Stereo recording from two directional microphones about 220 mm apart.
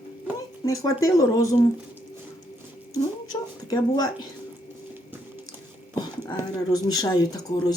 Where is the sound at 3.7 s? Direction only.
15° left (ahead or behind).